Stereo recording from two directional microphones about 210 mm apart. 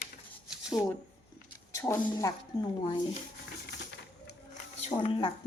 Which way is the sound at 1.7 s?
15° left (ahead or behind).